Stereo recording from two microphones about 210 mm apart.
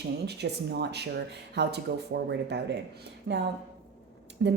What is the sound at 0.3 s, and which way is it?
Speech, 50° right (ahead or behind).